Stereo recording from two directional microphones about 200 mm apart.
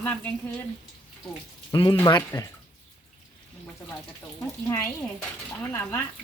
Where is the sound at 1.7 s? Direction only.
25° left (ahead or behind).